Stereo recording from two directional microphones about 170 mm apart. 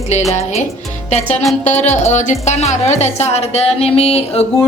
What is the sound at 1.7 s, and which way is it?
A woman's voice, 40° left (ahead or behind).